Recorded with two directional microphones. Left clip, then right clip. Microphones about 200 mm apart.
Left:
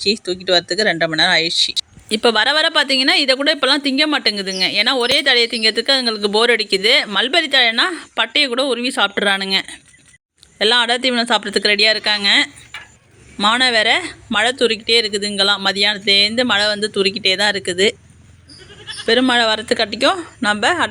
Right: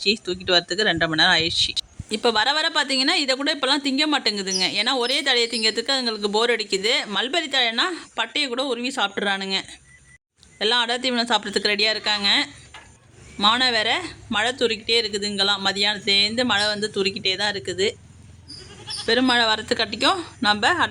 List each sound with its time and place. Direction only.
0.0 s speech: 5° left (ahead or behind)
2.0 s speech: 15° left (ahead or behind)
19.0 s speech: 15° left (ahead or behind)